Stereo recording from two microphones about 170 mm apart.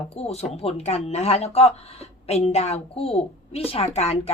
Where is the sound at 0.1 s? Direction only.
35° left (ahead or behind).